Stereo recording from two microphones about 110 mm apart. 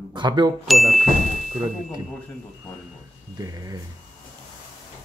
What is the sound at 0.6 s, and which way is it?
Ding, centre (ahead or behind).